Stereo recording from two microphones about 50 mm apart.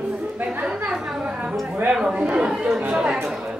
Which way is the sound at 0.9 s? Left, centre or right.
Centre.